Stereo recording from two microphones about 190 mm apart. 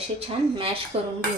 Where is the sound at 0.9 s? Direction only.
30° right (ahead or behind).